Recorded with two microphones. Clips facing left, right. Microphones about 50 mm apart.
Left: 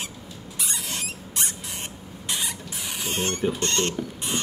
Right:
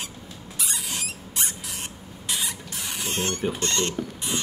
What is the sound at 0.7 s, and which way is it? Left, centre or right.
Rodents, centre.